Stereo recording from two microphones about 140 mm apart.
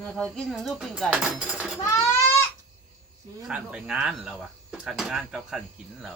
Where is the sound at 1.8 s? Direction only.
20° left (ahead or behind).